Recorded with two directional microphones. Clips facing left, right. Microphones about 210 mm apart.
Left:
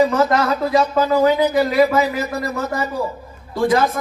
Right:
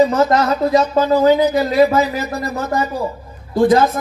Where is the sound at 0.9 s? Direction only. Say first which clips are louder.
Right 3 dB; 30° right (ahead or behind).